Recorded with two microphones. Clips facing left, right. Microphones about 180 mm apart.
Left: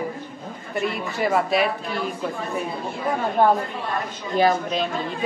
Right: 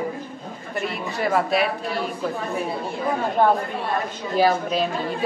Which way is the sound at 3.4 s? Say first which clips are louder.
Left 1 dB; centre (ahead or behind).